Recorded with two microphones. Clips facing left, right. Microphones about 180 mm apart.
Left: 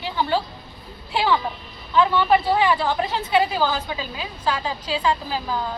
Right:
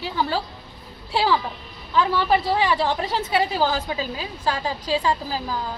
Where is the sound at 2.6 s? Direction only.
35° right (ahead or behind).